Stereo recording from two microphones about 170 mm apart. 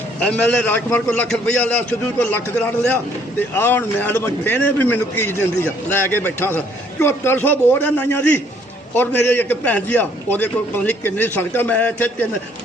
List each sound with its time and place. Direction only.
0.2 s a man's voice: 5° left (ahead or behind)